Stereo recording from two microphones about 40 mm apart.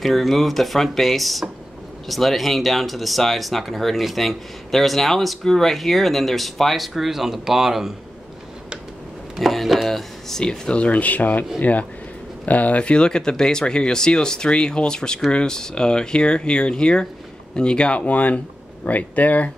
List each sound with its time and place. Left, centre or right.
0.0 s speech: centre
7.0 s speech: centre
9.4 s a sound: centre
10.6 s speech: left
10.9 s speech: left
12.4 s speech: left
18.0 s speech: left